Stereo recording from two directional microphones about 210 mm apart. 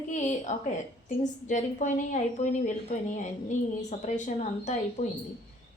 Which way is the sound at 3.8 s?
35° left (ahead or behind).